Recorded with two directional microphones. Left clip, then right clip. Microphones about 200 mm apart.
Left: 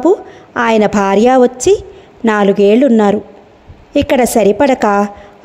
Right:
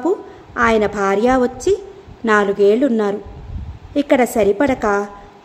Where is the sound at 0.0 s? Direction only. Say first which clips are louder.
Left 8 dB; 35° left (ahead or behind).